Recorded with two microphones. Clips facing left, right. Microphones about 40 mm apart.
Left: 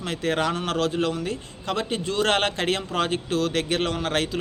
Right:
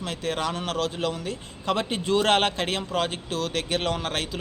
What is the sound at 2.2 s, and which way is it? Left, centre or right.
A man's voice, centre.